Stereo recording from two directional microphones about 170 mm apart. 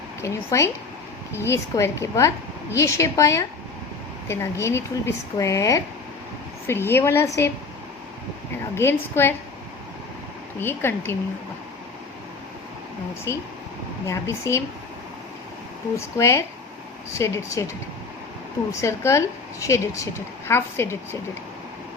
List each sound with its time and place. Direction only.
0.2 s speech: 15° left (ahead or behind)
8.7 s speech: 15° left (ahead or behind)
10.6 s speech: 15° left (ahead or behind)
13.3 s speech: 15° left (ahead or behind)
16.0 s speech: 15° left (ahead or behind)
18.7 s speech: 15° left (ahead or behind)